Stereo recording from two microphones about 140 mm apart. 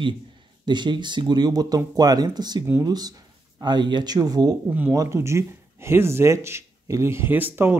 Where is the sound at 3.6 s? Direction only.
30° right (ahead or behind).